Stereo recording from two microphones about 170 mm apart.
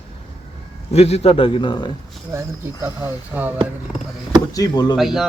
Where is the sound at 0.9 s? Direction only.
35° left (ahead or behind).